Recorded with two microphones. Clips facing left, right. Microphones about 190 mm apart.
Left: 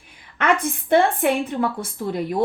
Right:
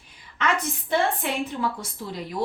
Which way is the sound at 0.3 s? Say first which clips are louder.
Left 5 dB; 55° left (ahead or behind).